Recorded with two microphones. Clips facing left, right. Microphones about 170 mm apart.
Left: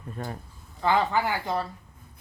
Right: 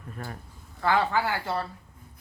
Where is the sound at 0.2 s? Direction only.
25° left (ahead or behind).